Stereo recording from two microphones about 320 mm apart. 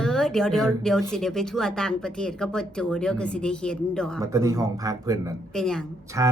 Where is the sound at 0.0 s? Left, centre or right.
Centre.